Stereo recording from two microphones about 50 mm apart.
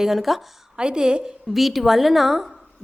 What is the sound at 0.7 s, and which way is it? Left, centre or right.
Speech, centre.